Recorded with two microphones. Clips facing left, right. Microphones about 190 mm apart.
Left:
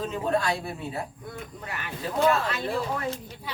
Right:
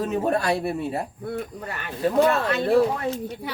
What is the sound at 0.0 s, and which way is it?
Speech, 65° right (ahead or behind).